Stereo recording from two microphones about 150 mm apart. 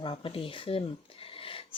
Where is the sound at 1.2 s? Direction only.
40° left (ahead or behind).